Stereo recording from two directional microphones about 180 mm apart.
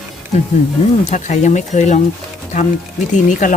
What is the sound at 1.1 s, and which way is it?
Speech, 45° left (ahead or behind).